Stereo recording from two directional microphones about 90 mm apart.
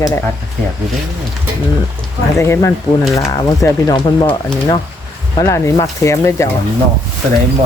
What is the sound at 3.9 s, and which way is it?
Speech, 55° left (ahead or behind).